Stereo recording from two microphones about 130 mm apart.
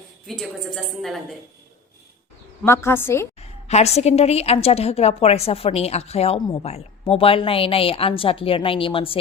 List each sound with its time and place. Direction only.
0.3 s a woman's voice: centre (ahead or behind)
2.6 s a woman's voice: 20° left (ahead or behind)
3.3 s a woman's voice: 55° left (ahead or behind)